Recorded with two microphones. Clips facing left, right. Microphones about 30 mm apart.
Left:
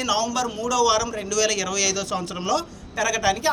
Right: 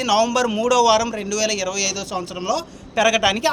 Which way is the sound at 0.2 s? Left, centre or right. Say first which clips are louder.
Right 6 dB; right.